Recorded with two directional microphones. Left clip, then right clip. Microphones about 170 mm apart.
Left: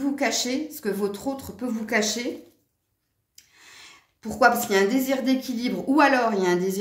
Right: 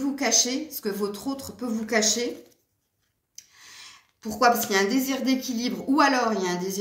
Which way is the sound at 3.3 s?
45° left (ahead or behind).